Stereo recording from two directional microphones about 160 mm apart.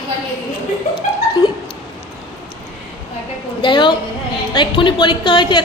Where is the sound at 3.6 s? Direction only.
30° left (ahead or behind).